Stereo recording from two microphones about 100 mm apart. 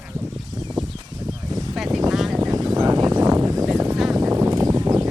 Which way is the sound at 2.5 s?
40° right (ahead or behind).